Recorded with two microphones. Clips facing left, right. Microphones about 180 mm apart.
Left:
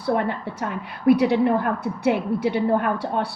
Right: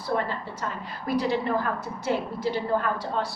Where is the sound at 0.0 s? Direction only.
65° left (ahead or behind).